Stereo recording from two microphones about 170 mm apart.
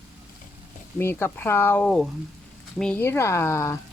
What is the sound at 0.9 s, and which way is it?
Speech, 15° left (ahead or behind).